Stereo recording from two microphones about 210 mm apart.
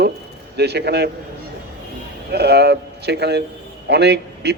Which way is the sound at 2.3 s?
50° right (ahead or behind).